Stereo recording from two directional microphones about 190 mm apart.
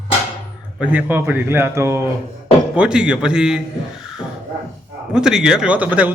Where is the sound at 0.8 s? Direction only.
10° right (ahead or behind).